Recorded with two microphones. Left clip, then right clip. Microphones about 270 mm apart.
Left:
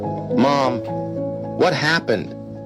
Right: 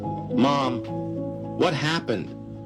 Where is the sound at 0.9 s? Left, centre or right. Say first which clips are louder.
Left 6 dB; left.